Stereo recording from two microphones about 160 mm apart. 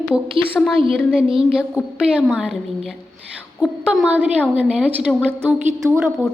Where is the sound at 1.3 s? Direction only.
35° right (ahead or behind).